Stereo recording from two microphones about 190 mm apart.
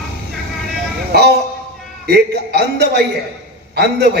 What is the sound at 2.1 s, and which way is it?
A man's voice, 60° right (ahead or behind).